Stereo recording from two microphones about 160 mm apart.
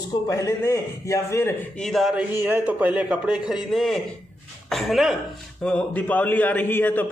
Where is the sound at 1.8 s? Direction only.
Centre (ahead or behind).